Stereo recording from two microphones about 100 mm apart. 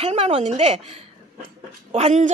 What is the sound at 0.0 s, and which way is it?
Speech, 80° right.